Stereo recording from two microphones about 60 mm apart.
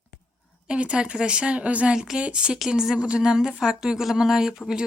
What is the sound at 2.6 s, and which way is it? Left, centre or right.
Speech, centre.